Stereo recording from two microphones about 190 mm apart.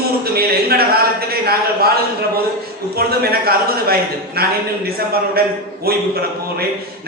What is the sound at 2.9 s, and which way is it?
Speech, 55° right (ahead or behind).